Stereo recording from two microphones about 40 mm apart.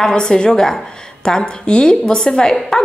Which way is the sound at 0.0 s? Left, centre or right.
Centre.